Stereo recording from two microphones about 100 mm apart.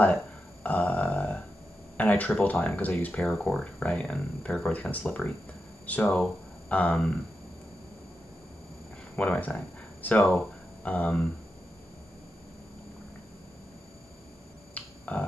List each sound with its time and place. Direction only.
0.7 s a sound: 15° left (ahead or behind)
2.0 s speech: 15° left (ahead or behind)
9.1 s speech: 10° left (ahead or behind)
14.7 s finger snapping: 15° left (ahead or behind)